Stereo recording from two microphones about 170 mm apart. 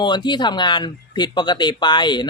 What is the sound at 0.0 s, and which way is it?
Speech, 25° left (ahead or behind).